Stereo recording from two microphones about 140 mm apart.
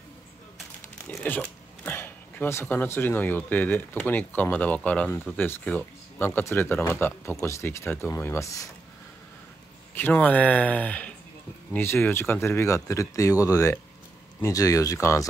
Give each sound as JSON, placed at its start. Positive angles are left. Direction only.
{"t": 1.2, "sound": "speech", "side_deg": 15}
{"t": 9.9, "sound": "speech", "side_deg": 15}